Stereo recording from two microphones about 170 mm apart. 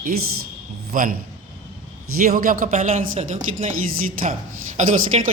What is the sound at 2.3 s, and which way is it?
Speech, 55° right (ahead or behind).